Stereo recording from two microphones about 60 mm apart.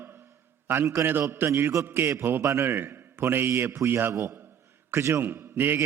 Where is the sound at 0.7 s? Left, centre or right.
Right.